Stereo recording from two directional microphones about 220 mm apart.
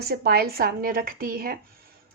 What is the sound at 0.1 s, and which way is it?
A woman's voice, 45° right (ahead or behind).